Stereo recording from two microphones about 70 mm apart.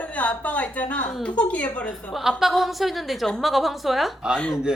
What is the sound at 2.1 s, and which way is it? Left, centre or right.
A woman's voice, centre.